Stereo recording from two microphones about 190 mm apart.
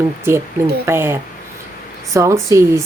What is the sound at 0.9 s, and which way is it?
Speech, 10° right (ahead or behind).